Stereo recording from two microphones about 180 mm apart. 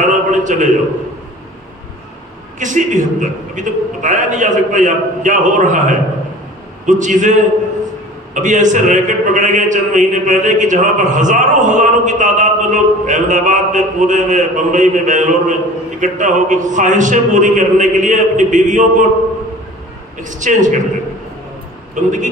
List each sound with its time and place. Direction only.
0.0 s a sound: 45° right (ahead or behind)
2.6 s a man's voice: 45° right (ahead or behind)
20.2 s a man's voice: 45° right (ahead or behind)
22.0 s a man's voice: 45° right (ahead or behind)